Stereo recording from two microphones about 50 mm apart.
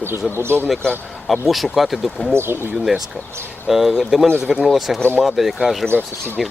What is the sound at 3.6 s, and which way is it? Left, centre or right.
Speech, centre.